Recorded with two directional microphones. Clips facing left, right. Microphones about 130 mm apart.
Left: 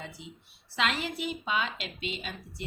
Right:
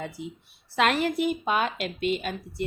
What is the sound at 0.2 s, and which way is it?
A woman's voice, 50° right (ahead or behind).